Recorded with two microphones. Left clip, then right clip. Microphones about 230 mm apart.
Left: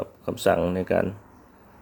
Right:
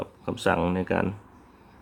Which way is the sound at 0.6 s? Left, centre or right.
Centre.